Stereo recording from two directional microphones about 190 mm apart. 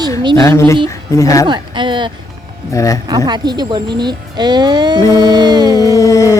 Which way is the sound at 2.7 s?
15° left (ahead or behind).